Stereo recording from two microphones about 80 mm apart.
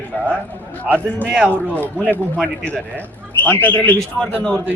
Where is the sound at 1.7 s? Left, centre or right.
Left.